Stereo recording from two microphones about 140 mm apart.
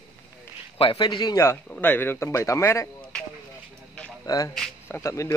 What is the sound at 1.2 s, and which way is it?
Speech, 20° left (ahead or behind).